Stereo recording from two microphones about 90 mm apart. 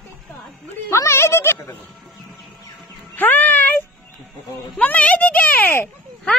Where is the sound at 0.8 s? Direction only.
30° left (ahead or behind).